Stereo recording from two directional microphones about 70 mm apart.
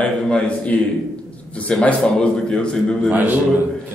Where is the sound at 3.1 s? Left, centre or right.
Right.